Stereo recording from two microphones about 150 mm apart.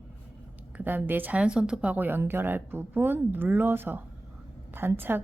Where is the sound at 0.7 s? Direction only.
10° right (ahead or behind).